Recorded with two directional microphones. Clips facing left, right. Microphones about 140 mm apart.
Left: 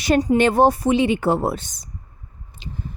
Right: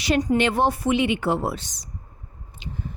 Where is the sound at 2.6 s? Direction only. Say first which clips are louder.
Left 1 dB; 35° left (ahead or behind).